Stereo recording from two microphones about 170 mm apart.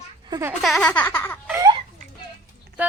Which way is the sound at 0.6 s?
Centre (ahead or behind).